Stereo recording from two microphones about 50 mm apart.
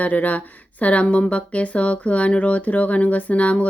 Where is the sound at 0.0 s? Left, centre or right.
Left.